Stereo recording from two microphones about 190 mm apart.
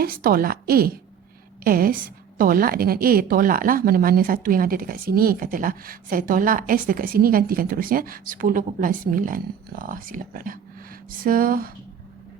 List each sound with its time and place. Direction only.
0.0 s speech: 50° right (ahead or behind)